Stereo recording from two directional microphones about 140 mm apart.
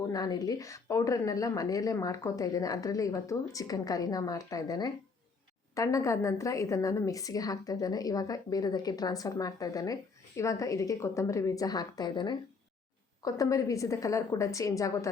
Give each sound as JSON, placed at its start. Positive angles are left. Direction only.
{"t": 0.1, "sound": "a woman's voice", "side_deg": 25}